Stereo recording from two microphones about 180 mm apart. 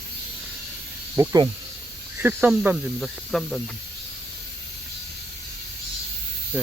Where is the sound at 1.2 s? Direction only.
15° right (ahead or behind); by 3.6 s centre (ahead or behind).